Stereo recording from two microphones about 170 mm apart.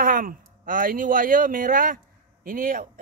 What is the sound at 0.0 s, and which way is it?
Speech, 55° right (ahead or behind).